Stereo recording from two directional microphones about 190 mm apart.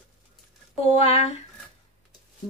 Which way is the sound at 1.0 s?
35° left (ahead or behind).